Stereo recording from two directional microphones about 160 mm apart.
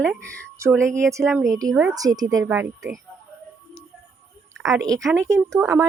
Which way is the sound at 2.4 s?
10° right (ahead or behind).